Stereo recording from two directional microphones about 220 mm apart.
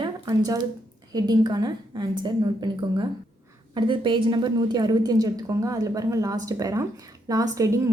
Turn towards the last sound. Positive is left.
turn(degrees=-15)  # may be behind; listen again after turning